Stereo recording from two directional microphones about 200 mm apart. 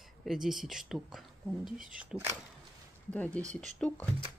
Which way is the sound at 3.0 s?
5° left (ahead or behind).